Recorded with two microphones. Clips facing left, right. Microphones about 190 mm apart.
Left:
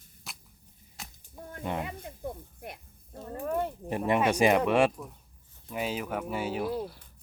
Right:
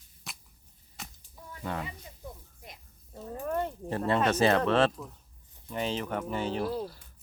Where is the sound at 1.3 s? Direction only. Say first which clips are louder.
Left 5 dB; 50° left (ahead or behind).